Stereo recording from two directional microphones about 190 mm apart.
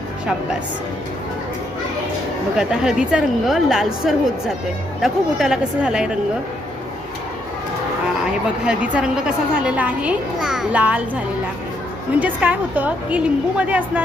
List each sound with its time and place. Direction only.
2.6 s a woman's voice: 5° right (ahead or behind)
8.6 s a child's voice: 5° right (ahead or behind)
12.2 s a child's voice: 10° right (ahead or behind)